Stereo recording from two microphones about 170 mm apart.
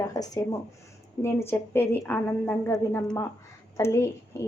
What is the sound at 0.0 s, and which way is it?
A woman's voice, 20° left (ahead or behind).